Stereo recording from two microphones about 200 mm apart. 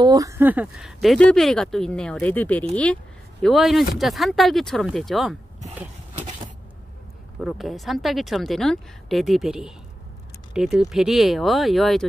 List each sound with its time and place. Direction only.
0.0 s speech: 15° right (ahead or behind); by 5.4 s centre (ahead or behind)
6.1 s a sound: 30° right (ahead or behind)
7.4 s speech: centre (ahead or behind)